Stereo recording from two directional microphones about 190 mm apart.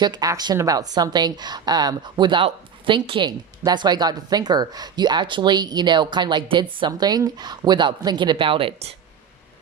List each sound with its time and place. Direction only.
0.0 s a woman's voice: 20° right (ahead or behind)